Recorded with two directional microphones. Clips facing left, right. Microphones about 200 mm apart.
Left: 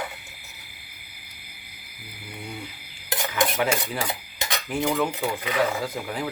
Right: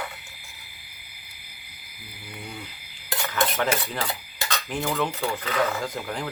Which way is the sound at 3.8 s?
15° left (ahead or behind).